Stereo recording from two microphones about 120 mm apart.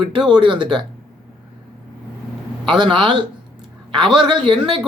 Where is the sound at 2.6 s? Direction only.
40° right (ahead or behind).